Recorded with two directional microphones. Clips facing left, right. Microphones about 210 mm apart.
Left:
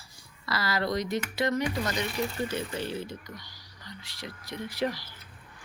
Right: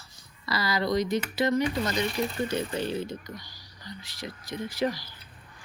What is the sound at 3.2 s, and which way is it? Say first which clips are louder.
Speech: right 3 dB; 40° right (ahead or behind).